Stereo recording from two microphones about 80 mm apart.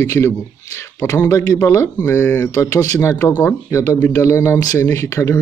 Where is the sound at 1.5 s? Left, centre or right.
Left.